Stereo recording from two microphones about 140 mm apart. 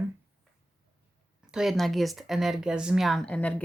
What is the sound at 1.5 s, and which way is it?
Speech, centre (ahead or behind).